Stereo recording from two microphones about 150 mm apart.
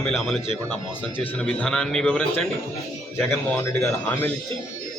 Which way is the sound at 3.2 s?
15° left (ahead or behind).